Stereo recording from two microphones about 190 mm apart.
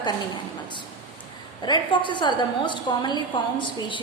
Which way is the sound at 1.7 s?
25° left (ahead or behind).